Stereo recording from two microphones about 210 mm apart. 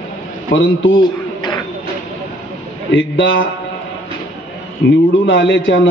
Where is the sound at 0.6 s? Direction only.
65° left (ahead or behind).